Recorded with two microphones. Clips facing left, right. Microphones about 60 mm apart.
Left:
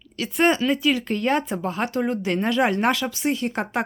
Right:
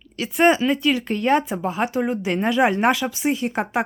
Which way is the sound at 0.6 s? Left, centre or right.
Centre.